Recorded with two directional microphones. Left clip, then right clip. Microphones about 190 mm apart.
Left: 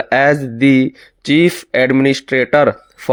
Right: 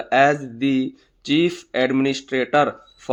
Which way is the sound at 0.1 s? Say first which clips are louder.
Left 3 dB; 40° left (ahead or behind).